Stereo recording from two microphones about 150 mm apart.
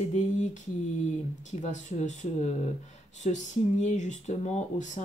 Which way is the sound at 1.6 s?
55° left (ahead or behind).